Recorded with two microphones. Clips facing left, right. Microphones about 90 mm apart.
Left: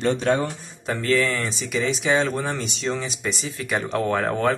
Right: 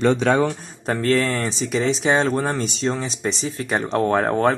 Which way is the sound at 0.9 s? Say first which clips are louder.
Right 2 dB; 45° right (ahead or behind).